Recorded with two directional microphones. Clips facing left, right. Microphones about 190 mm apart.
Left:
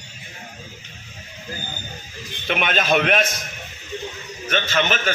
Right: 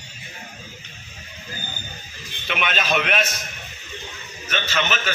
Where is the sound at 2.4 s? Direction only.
45° left (ahead or behind).